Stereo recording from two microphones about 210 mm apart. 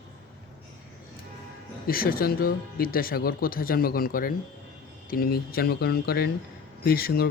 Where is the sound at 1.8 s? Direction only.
45° left (ahead or behind).